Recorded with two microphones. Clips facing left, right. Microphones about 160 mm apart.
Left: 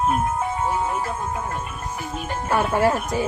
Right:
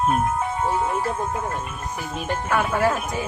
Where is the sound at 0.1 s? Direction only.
5° left (ahead or behind).